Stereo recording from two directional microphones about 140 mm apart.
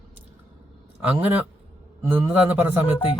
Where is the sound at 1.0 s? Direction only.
10° right (ahead or behind).